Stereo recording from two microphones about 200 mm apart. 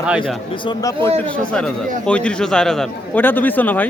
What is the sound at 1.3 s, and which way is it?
A man's voice, 5° left (ahead or behind).